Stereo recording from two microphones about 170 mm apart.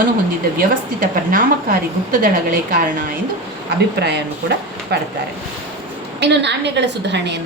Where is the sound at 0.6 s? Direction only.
55° right (ahead or behind).